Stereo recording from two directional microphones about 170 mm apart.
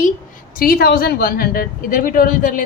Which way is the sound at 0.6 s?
60° left (ahead or behind).